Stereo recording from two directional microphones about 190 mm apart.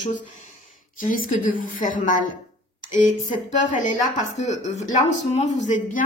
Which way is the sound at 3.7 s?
40° left (ahead or behind).